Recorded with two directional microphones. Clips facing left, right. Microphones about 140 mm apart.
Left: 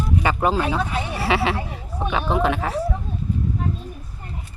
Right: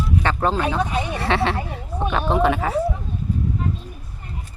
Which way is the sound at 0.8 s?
15° right (ahead or behind).